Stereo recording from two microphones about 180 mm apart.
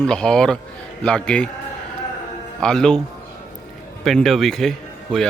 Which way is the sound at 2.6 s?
5° left (ahead or behind).